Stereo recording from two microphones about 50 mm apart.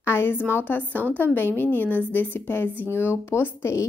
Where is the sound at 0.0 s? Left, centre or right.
Left.